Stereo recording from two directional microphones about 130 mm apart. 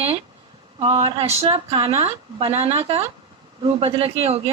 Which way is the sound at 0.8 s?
40° right (ahead or behind).